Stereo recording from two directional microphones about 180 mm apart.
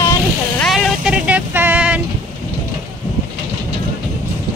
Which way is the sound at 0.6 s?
Centre (ahead or behind).